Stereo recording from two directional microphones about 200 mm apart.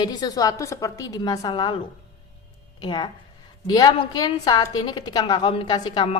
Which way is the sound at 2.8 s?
20° left (ahead or behind).